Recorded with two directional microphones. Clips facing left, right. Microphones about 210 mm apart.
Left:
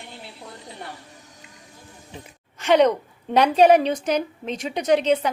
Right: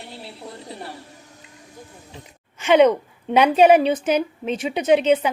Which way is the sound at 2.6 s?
Centre (ahead or behind).